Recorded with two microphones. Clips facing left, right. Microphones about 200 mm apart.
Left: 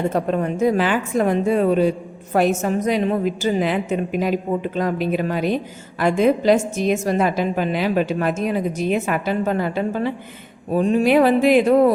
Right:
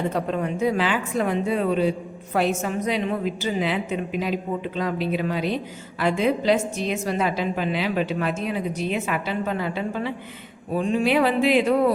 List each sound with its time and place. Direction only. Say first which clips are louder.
0.1 s speech: left 4 dB; 45° left (ahead or behind)